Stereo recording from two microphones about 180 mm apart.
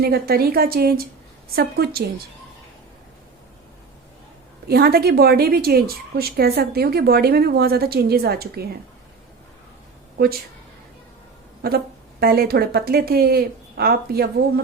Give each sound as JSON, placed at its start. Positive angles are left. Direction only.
{"t": 0.0, "sound": "a woman's voice", "side_deg": -60}
{"t": 4.7, "sound": "a woman's voice", "side_deg": -60}
{"t": 12.2, "sound": "a woman's voice", "side_deg": -60}